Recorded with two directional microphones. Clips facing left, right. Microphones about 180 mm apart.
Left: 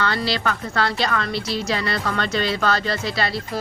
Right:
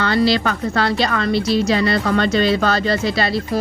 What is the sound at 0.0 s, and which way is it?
A woman's voice, 20° right (ahead or behind).